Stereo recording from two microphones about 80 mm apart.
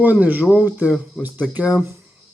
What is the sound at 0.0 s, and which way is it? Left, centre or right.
Speech, right.